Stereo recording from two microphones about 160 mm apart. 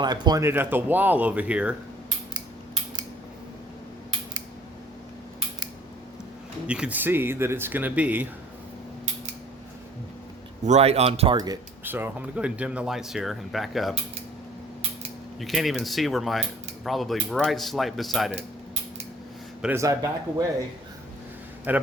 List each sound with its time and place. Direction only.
0.0 s speech: 25° right (ahead or behind); by 1.7 s 10° right (ahead or behind)
6.7 s speech: 10° right (ahead or behind)
10.6 s speech: 45° right (ahead or behind)
11.3 s speech: 25° right (ahead or behind)
11.9 s speech: 10° right (ahead or behind)
15.4 s speech: centre (ahead or behind)
19.7 s speech: 20° right (ahead or behind)
21.7 s speech: 10° right (ahead or behind)